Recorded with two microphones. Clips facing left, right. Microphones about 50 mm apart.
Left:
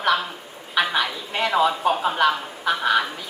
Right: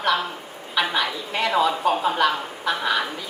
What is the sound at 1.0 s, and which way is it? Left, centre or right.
A woman's voice, centre.